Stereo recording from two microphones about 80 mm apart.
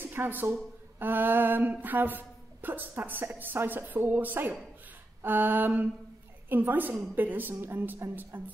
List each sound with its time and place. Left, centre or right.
0.0 s speech: right
0.9 s a sound: right
3.0 s speech: right